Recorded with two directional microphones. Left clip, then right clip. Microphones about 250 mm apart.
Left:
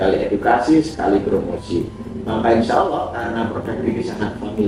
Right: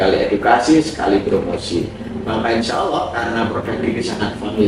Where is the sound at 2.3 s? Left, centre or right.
Centre.